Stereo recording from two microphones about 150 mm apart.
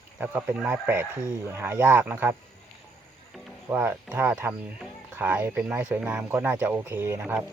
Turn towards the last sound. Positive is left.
turn(degrees=-10)  # may be behind; listen again after turning